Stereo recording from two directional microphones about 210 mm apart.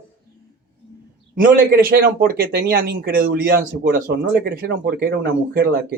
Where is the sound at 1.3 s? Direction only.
45° right (ahead or behind).